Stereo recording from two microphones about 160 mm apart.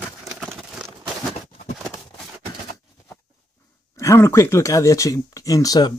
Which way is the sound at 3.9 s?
15° left (ahead or behind).